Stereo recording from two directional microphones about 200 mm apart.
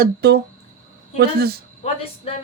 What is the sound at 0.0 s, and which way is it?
Speech, 55° right (ahead or behind).